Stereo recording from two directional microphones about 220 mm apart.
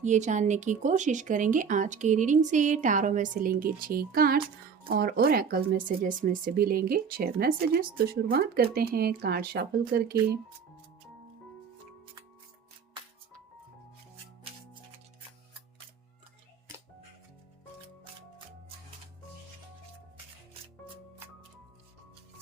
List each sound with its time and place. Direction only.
0.0 s speech: 35° right (ahead or behind)